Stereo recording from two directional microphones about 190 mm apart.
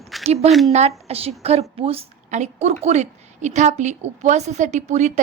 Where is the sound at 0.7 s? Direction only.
35° right (ahead or behind).